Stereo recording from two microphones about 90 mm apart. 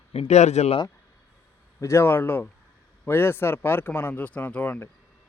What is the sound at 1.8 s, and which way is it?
Speech, 30° left (ahead or behind).